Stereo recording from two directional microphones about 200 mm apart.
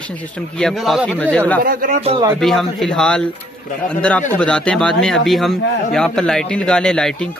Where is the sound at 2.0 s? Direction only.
30° right (ahead or behind).